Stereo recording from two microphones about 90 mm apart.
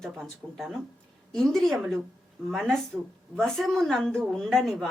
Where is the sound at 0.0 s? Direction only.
Centre (ahead or behind).